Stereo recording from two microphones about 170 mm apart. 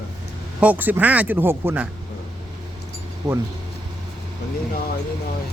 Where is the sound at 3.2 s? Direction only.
20° right (ahead or behind).